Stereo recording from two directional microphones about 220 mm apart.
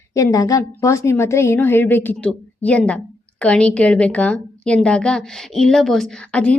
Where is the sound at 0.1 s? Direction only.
15° left (ahead or behind).